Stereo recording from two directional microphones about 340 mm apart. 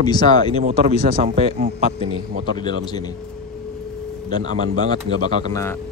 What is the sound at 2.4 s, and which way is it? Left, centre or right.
Speech, centre.